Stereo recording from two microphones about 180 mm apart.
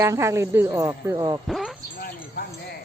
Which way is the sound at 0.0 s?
15° right (ahead or behind).